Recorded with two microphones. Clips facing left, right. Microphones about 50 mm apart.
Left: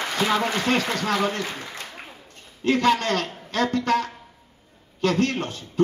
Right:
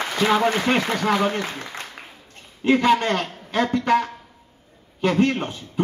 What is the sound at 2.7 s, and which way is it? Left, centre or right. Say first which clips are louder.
A man's voice: right 2 dB; centre.